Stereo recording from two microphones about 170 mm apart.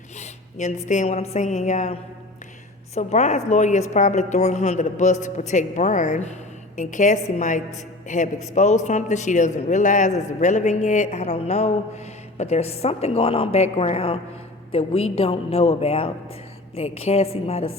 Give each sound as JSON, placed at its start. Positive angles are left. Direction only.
{"t": 0.2, "sound": "a woman's voice", "side_deg": 45}